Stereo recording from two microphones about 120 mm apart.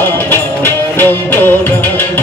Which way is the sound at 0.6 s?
15° left (ahead or behind).